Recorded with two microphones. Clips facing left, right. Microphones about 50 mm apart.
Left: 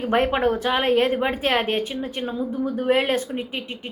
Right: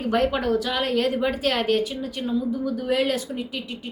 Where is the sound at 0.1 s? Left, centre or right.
Left.